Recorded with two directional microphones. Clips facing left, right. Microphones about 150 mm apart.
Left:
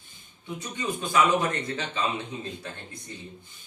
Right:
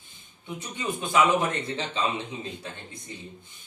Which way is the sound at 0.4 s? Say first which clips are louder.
Even; 20° right (ahead or behind).